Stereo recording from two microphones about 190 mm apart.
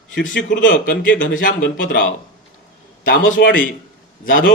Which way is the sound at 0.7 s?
50° left (ahead or behind).